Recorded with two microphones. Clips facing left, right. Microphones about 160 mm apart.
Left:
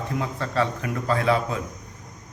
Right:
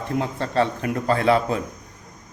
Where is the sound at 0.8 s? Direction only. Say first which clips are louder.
Right 4 dB; 50° right (ahead or behind).